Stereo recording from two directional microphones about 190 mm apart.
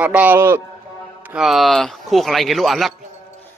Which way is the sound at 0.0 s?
10° right (ahead or behind).